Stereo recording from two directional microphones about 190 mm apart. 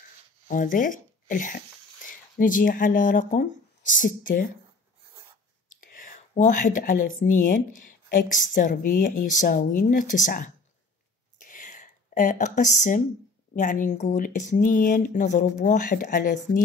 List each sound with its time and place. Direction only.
0.5 s speech: 45° left (ahead or behind)
5.7 s speech: 45° left (ahead or behind)
11.3 s a sound: 45° left (ahead or behind)
13.6 s speech: 40° left (ahead or behind)